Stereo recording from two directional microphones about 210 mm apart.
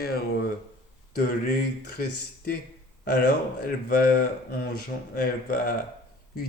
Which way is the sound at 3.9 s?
45° left (ahead or behind).